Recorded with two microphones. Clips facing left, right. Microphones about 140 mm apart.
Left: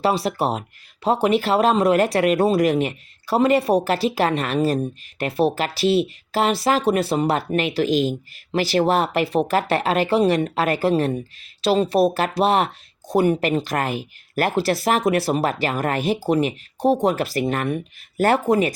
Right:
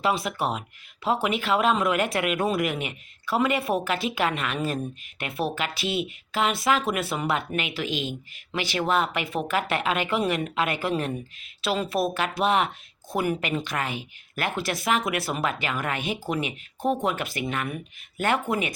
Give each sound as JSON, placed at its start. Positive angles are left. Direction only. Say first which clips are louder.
{"t": 0.0, "sound": "speech", "louder": "left 5 dB", "side_deg": 35}